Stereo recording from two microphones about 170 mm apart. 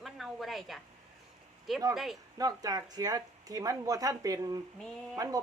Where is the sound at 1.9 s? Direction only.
Centre (ahead or behind).